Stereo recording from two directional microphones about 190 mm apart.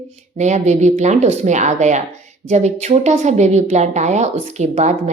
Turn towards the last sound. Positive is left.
turn(degrees=-35)  # may be behind; listen again after turning